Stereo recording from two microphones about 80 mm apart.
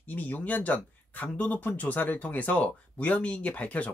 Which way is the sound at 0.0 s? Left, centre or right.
Centre.